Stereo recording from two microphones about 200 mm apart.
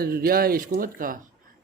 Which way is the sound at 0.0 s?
50° right (ahead or behind).